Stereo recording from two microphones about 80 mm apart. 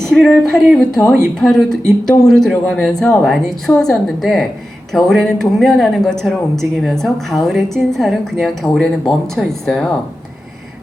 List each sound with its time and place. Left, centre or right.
0.0 s speech: centre